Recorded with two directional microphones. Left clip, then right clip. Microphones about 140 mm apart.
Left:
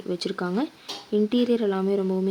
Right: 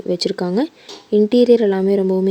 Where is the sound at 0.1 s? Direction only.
40° right (ahead or behind).